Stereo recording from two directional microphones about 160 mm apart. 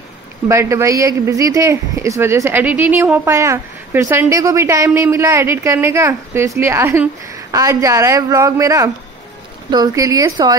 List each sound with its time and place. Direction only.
0.5 s speech: 20° right (ahead or behind)